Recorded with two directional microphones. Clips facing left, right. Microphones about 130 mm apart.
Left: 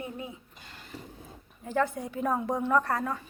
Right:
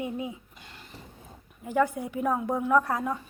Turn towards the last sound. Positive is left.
turn(degrees=-10)  # may be behind; listen again after turning